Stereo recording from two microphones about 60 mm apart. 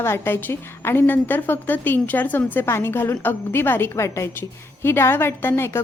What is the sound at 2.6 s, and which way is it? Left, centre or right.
A woman's voice, left.